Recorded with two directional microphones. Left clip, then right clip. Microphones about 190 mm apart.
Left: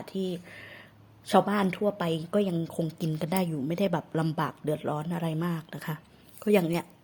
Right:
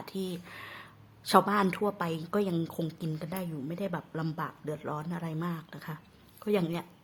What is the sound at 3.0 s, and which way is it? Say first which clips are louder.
A woman's voice: left 8 dB; 20° left (ahead or behind).